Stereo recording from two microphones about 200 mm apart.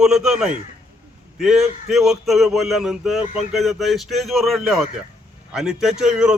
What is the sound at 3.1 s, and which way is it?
Speech, 30° left (ahead or behind).